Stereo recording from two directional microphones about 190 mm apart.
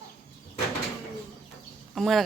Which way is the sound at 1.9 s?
Centre (ahead or behind).